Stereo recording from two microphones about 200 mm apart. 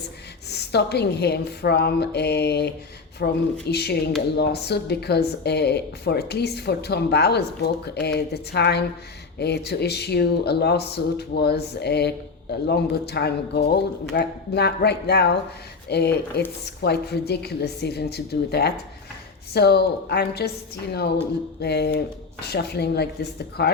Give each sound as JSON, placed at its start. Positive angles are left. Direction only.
{"t": 0.5, "sound": "speech", "side_deg": 55}
{"t": 21.6, "sound": "speech", "side_deg": 55}